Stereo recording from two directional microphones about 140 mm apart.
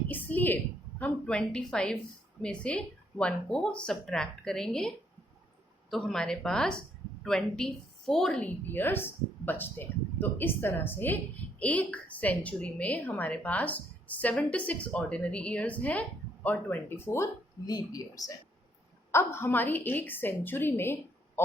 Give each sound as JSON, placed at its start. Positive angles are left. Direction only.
{"t": 0.1, "sound": "a woman's voice", "side_deg": 15}
{"t": 5.9, "sound": "a woman's voice", "side_deg": 5}
{"t": 17.7, "sound": "a woman's voice", "side_deg": 25}